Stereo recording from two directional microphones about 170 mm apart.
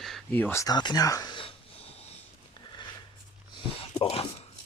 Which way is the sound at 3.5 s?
35° left (ahead or behind).